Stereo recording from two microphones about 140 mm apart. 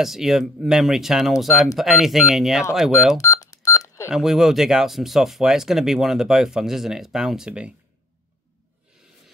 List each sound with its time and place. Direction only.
0.0 s speech: centre (ahead or behind)
3.2 s telephone dialing: 25° left (ahead or behind)
4.1 s speech: centre (ahead or behind)